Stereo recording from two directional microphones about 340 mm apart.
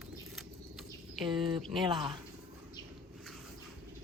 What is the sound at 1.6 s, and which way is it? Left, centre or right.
Speech, centre.